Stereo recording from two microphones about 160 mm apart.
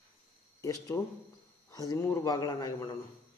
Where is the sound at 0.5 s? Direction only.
20° left (ahead or behind).